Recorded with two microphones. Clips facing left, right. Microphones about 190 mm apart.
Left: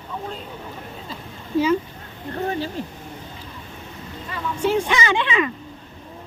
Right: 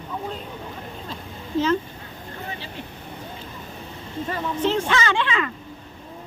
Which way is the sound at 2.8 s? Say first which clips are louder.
Left 6 dB; 40° left (ahead or behind).